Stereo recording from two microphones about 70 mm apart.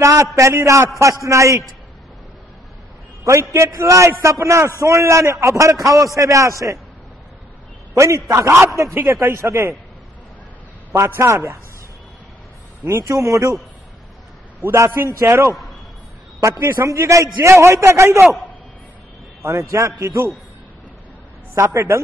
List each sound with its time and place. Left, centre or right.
0.4 s a man's voice: right
3.3 s a man's voice: right
7.9 s a man's voice: right
10.9 s a man's voice: right
12.8 s a man's voice: right
14.6 s a man's voice: right
19.4 s a man's voice: right
21.5 s a man's voice: right